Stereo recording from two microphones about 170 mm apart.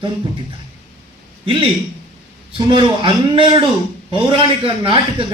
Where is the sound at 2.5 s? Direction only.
30° right (ahead or behind).